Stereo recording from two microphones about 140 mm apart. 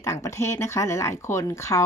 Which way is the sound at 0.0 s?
20° left (ahead or behind).